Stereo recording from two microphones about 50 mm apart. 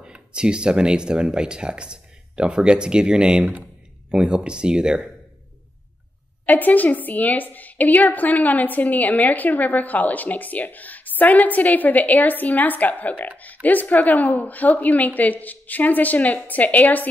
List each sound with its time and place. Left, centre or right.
0.0 s speech: centre
6.4 s a woman's voice: left